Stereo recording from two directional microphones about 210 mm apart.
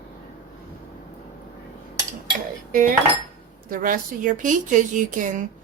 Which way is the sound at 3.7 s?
40° right (ahead or behind).